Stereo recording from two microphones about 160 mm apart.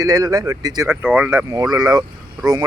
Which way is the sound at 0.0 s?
20° right (ahead or behind).